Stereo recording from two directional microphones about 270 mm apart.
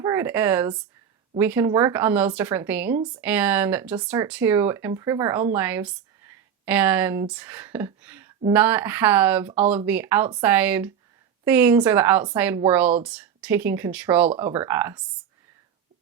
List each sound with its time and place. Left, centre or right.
0.0 s speech: centre